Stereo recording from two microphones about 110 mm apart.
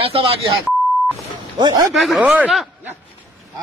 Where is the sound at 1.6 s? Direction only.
45° right (ahead or behind).